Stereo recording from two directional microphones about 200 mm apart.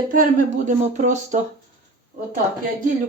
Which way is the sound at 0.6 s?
40° right (ahead or behind).